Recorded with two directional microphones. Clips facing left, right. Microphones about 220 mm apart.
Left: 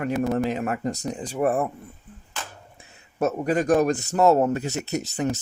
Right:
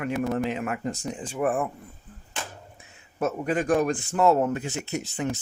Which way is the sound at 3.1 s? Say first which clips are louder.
Left 3 dB; 40° left (ahead or behind).